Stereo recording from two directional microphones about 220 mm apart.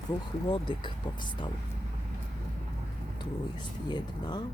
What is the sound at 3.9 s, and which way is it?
Speech, 20° left (ahead or behind).